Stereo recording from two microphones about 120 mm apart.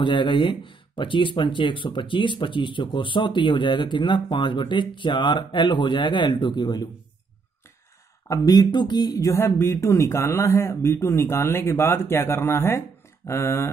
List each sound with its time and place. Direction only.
0.0 s speech: 40° left (ahead or behind)
8.3 s speech: 35° left (ahead or behind)